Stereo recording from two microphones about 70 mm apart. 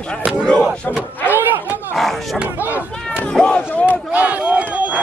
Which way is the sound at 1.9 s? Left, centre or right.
Centre.